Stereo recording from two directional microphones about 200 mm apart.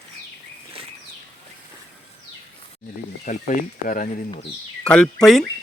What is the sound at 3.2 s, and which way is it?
Speech, 40° left (ahead or behind).